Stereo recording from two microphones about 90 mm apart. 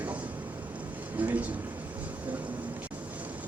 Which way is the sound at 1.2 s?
15° right (ahead or behind).